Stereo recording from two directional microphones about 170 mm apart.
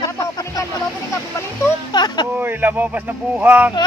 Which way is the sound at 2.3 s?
10° right (ahead or behind).